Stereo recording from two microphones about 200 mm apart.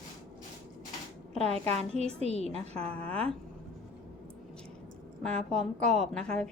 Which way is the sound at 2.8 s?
5° left (ahead or behind).